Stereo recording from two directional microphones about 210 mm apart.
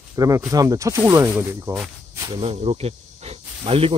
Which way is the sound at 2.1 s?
20° right (ahead or behind).